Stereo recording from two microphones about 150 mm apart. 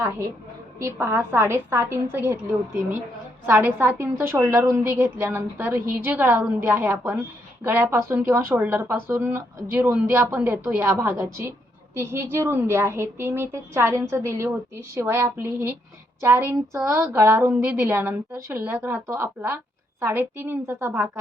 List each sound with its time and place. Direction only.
0.8 s a woman's voice: 15° right (ahead or behind)
3.4 s a woman's voice: 15° right (ahead or behind)